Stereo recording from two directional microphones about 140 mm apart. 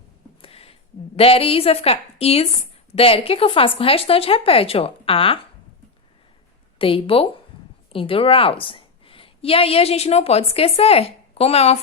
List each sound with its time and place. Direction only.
0.4 s a woman's voice: 45° left (ahead or behind)
6.7 s a woman's voice: 40° left (ahead or behind)